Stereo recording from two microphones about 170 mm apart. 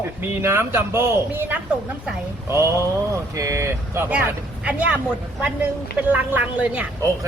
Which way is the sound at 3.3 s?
20° right (ahead or behind).